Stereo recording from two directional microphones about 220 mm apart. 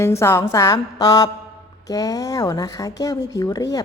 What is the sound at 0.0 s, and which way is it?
A man's voice, 10° left (ahead or behind).